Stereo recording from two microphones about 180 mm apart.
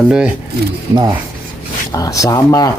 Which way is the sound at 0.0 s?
5° right (ahead or behind).